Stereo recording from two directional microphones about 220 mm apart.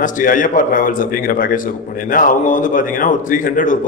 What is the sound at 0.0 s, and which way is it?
A man's voice, 35° left (ahead or behind).